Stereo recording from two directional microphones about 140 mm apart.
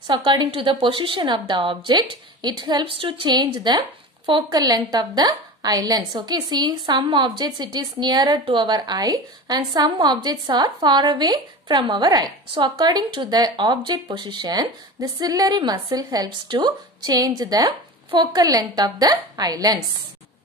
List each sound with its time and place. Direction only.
0.0 s a woman's voice: 35° right (ahead or behind)